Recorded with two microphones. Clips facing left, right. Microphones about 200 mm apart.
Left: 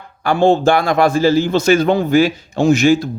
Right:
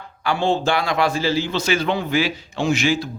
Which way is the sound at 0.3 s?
45° left (ahead or behind).